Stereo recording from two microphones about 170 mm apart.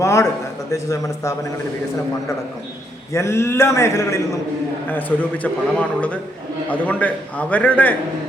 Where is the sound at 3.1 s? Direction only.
15° left (ahead or behind).